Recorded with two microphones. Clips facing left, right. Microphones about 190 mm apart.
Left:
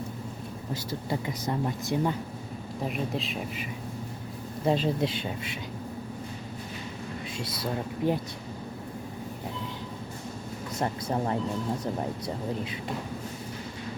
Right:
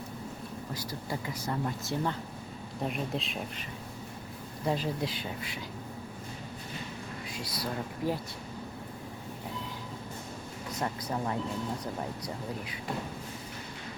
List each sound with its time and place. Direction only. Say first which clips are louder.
0.7 s speech: left 6 dB; 25° left (ahead or behind)
2.8 s speech: left 2 dB; centre (ahead or behind)
4.6 s speech: left 5 dB; 25° left (ahead or behind)
7.3 s speech: left 3 dB; 25° left (ahead or behind)
10.8 s speech: left 4 dB; 30° left (ahead or behind)